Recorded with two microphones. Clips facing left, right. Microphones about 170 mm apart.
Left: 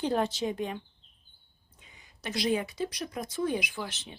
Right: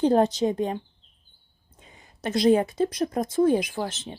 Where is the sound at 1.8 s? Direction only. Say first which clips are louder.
Right 8 dB; 50° right (ahead or behind).